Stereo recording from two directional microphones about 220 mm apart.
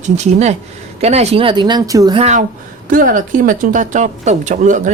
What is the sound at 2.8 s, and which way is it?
Speech, 40° right (ahead or behind).